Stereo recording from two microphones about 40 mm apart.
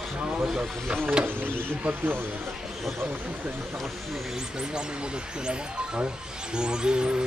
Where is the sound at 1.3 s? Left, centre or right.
Right.